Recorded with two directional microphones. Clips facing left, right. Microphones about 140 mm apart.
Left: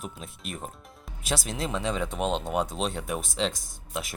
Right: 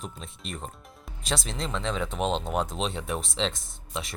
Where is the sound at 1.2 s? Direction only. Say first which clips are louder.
Left 1 dB; 5° left (ahead or behind).